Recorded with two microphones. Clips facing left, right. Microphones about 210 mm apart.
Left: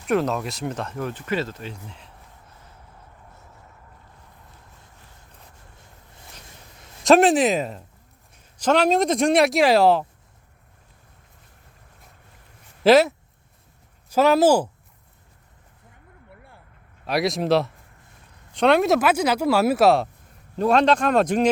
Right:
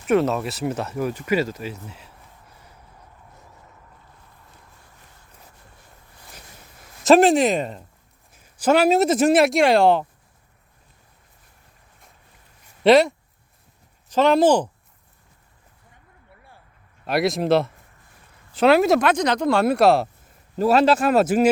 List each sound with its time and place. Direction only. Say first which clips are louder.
0.1 s speech: right 3 dB; centre (ahead or behind)
7.0 s speech: right 1 dB; centre (ahead or behind)
12.8 s speech: right 1 dB; centre (ahead or behind)
16.3 s a sound: left 2 dB; 55° left (ahead or behind)
17.1 s speech: right 1 dB; centre (ahead or behind)